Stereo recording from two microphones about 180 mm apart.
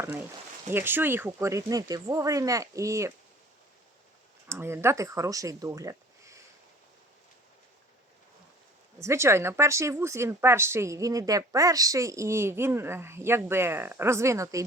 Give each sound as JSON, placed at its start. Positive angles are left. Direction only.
{"t": 0.0, "sound": "speech", "side_deg": -15}
{"t": 4.4, "sound": "speech", "side_deg": -15}
{"t": 9.0, "sound": "speech", "side_deg": -15}